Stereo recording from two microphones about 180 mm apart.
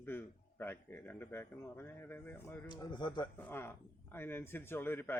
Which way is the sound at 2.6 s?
25° left (ahead or behind).